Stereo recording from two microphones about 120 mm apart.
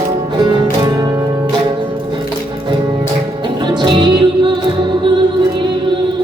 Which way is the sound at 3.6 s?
40° right (ahead or behind).